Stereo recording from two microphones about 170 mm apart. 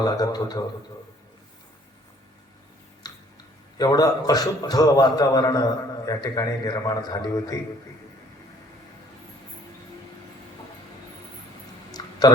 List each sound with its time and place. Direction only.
0.0 s a man's voice: 25° left (ahead or behind)
3.1 s chewing: 25° left (ahead or behind)
3.8 s a man's voice: 25° left (ahead or behind)
12.0 s a sound: 25° left (ahead or behind)